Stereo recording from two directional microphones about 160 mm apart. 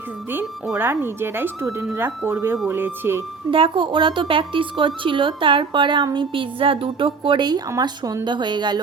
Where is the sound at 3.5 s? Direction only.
35° right (ahead or behind).